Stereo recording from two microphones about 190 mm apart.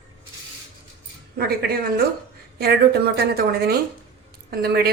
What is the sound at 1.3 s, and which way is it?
A woman's voice, 55° right (ahead or behind).